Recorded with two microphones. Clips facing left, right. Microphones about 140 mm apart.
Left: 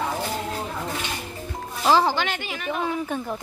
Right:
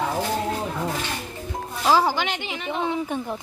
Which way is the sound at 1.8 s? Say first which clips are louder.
Even; 5° right (ahead or behind).